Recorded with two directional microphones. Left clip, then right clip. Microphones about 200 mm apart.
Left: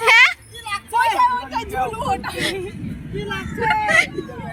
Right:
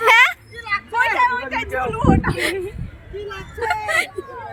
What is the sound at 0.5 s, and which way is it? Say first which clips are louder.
Vehicle: right 4 dB; 65° left (ahead or behind).